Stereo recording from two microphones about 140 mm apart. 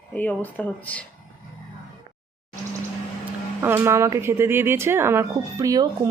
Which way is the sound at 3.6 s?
15° right (ahead or behind).